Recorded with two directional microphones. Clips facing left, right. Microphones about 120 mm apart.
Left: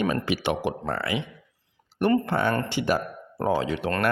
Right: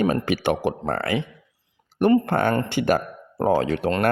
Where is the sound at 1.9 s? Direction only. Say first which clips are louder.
Right 4 dB; 45° right (ahead or behind).